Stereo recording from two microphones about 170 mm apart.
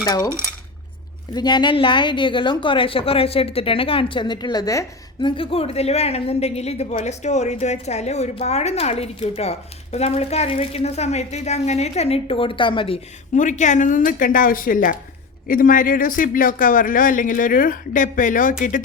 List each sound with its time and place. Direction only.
0.0 s a woman's voice: 20° left (ahead or behind)
1.4 s a woman's voice: 25° left (ahead or behind)
5.3 s a woman's voice: 35° left (ahead or behind)
13.3 s speech: 45° left (ahead or behind)